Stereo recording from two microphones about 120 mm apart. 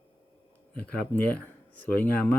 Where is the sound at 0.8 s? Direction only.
10° left (ahead or behind).